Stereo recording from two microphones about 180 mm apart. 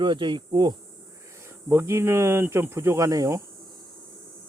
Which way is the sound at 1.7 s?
15° right (ahead or behind).